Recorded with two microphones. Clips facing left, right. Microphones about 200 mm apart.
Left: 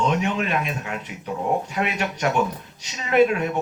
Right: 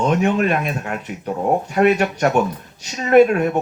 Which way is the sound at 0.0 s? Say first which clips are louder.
Right 6 dB; 50° right (ahead or behind).